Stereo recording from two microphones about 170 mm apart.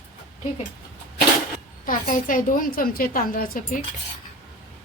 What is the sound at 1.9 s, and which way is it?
A woman's voice, 55° left (ahead or behind).